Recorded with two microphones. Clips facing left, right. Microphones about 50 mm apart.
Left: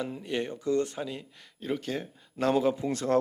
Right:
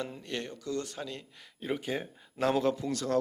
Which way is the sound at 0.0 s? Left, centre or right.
Centre.